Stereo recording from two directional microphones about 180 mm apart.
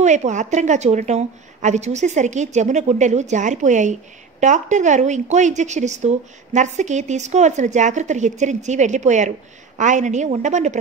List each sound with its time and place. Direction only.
0.0 s a woman's voice: 40° right (ahead or behind)